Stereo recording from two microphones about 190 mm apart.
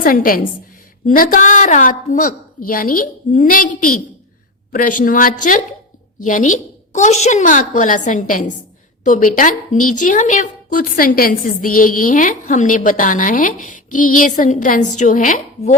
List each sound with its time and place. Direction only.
0.0 s a woman's voice: 50° left (ahead or behind)